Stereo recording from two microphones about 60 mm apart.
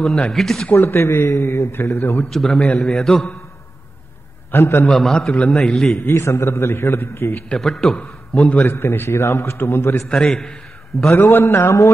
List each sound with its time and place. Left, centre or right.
0.3 s a man's voice: centre
0.7 s a man's voice: left
2.2 s a man's voice: centre
4.5 s a man's voice: left
4.8 s a man's voice: centre
5.1 s a man's voice: centre
5.5 s a man's voice: centre
6.0 s a man's voice: left
7.5 s a man's voice: centre
8.0 s a man's voice: left
8.7 s a man's voice: left
10.0 s a man's voice: centre
11.1 s a man's voice: left